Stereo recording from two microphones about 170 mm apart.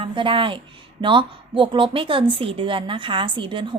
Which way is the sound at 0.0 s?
30° right (ahead or behind).